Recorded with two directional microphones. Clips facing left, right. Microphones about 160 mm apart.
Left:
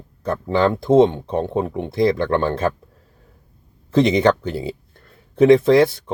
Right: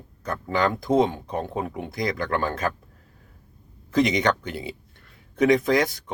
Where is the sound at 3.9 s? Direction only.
30° left (ahead or behind).